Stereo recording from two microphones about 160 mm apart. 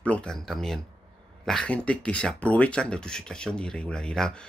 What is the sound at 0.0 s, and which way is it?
Speech, 5° left (ahead or behind).